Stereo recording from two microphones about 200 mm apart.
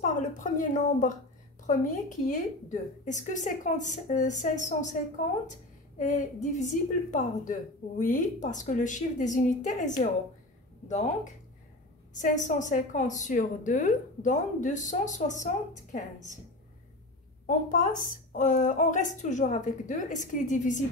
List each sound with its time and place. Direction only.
0.0 s a woman's voice: 40° left (ahead or behind)
12.2 s a woman's voice: 40° left (ahead or behind)
17.5 s a woman's voice: 40° left (ahead or behind)